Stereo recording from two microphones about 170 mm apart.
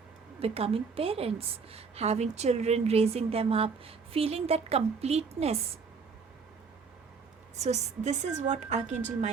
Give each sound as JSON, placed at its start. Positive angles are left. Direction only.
{"t": 0.3, "sound": "a woman's voice", "side_deg": -35}
{"t": 7.6, "sound": "a woman's voice", "side_deg": -40}